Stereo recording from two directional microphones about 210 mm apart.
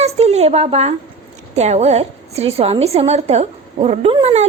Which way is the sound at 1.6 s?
30° right (ahead or behind).